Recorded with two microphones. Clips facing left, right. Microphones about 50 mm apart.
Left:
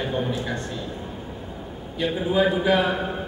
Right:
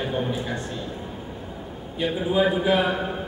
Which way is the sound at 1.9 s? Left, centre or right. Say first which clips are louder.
Even; centre.